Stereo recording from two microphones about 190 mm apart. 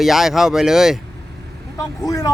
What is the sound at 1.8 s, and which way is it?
Speech, 15° left (ahead or behind).